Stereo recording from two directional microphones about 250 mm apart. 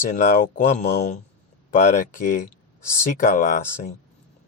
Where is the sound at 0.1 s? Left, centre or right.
Left.